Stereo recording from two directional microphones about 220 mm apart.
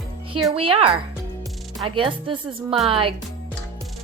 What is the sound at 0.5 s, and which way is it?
Speech, 25° right (ahead or behind).